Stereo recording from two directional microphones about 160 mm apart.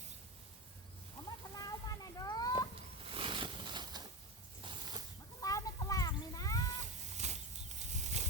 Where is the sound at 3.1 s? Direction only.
35° right (ahead or behind).